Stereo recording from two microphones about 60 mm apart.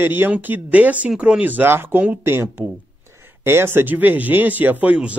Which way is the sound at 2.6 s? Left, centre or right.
Right.